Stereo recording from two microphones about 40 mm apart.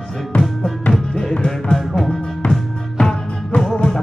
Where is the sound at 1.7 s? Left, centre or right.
Centre.